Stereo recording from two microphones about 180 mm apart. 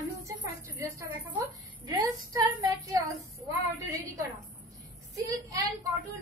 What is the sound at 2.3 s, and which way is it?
Speech, 15° right (ahead or behind).